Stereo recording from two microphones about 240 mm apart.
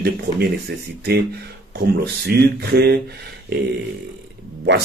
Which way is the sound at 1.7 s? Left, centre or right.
Right.